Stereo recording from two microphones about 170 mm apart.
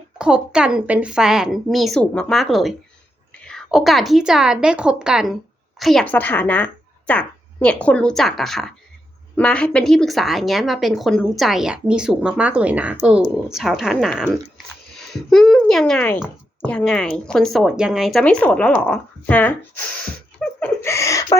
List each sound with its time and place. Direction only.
0.2 s a woman's voice: 5° right (ahead or behind)
20.4 s a sound: 5° left (ahead or behind)
20.8 s speech: 15° left (ahead or behind)